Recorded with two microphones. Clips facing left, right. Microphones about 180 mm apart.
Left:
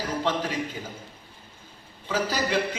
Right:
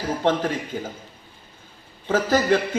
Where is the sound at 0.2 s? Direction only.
50° right (ahead or behind).